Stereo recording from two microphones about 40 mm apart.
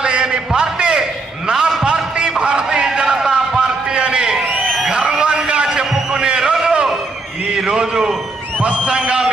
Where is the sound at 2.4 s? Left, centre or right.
Right.